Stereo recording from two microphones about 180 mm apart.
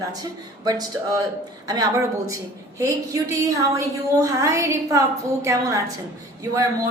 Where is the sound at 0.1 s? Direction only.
20° right (ahead or behind).